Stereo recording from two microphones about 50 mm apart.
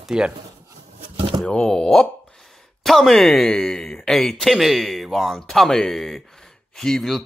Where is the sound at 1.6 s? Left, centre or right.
Centre.